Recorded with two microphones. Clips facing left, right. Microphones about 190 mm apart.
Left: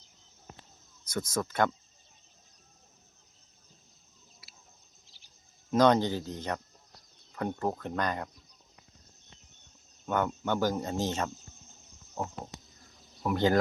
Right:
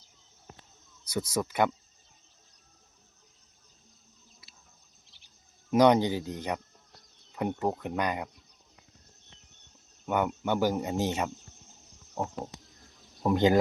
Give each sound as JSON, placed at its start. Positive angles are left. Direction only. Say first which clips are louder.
{"t": 1.1, "sound": "speech", "louder": "right 2 dB", "side_deg": -15}
{"t": 5.7, "sound": "speech", "louder": "right 2 dB", "side_deg": -15}
{"t": 10.1, "sound": "speech", "louder": "right 2 dB", "side_deg": -10}
{"t": 13.2, "sound": "speech", "louder": "right 3 dB", "side_deg": -20}